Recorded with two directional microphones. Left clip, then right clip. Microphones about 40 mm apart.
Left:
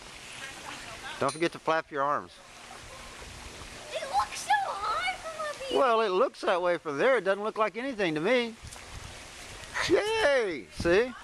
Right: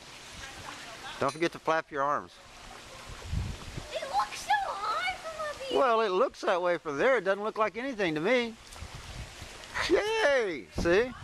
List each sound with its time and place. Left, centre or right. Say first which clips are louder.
1.2 s speech: left 1 dB; right
3.9 s a sound: left 1 dB; centre
5.9 s speech: left 1 dB; centre
9.9 s speech: left 1 dB; centre